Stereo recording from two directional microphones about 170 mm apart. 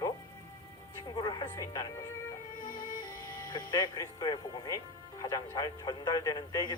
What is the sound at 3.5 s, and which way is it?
Speech, 20° left (ahead or behind).